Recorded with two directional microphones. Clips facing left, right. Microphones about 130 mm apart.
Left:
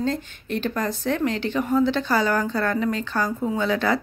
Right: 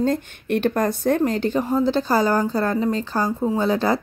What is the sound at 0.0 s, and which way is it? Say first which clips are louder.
A woman's voice: right 4 dB; 55° right (ahead or behind).